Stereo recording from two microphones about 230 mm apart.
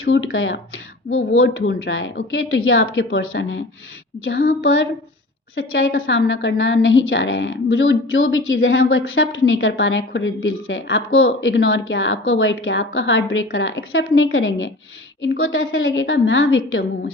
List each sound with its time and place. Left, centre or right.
0.0 s speech: left